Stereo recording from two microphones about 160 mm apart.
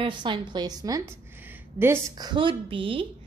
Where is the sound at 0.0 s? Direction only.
30° right (ahead or behind).